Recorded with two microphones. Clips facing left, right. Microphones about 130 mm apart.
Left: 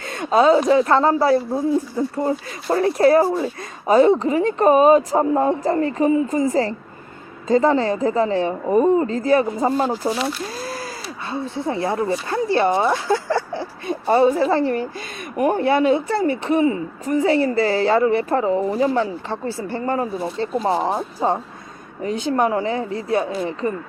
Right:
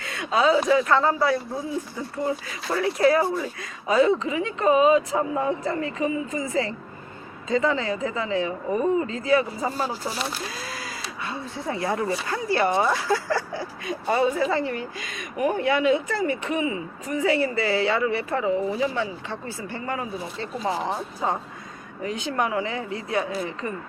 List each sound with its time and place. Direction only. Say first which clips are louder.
0.0 s a woman's voice: left 6 dB; 40° left (ahead or behind)
10.6 s a sound: left 6 dB; 35° left (ahead or behind)
11.3 s a woman's voice: left 7 dB; 30° left (ahead or behind)